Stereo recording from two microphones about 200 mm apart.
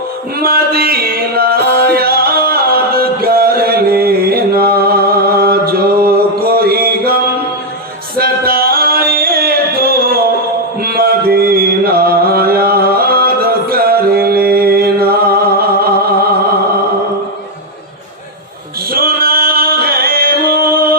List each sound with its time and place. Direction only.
0.3 s male singing: 50° right (ahead or behind)
8.2 s music: 50° right (ahead or behind)
18.9 s singing: 50° right (ahead or behind)